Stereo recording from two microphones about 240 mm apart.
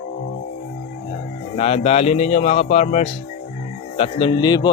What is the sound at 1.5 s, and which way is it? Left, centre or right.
Speech, left.